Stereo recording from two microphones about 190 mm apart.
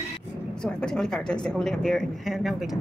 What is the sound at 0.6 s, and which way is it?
Speech, 5° left (ahead or behind).